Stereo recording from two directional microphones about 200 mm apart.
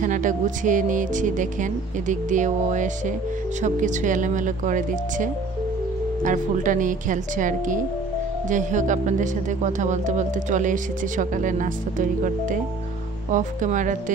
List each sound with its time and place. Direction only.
0.0 s speech: 40° right (ahead or behind)